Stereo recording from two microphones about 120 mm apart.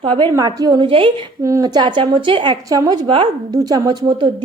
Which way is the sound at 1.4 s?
30° right (ahead or behind).